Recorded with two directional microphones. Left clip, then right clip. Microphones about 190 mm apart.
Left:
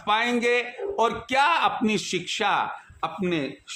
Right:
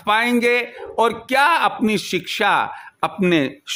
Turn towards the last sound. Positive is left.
turn(degrees=-50)  # may be behind; listen again after turning